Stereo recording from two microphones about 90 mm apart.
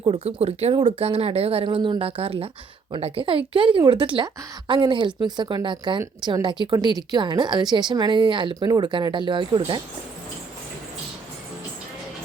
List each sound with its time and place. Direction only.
0.0 s a woman's voice: 75° right (ahead or behind); by 9.8 s 60° right (ahead or behind)